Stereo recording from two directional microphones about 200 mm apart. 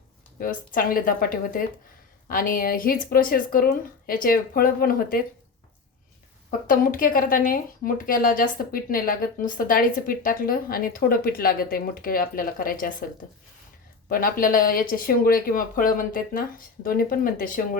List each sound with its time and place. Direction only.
0.3 s speech: 45° left (ahead or behind)
6.7 s speech: 45° left (ahead or behind)
14.1 s speech: 45° left (ahead or behind)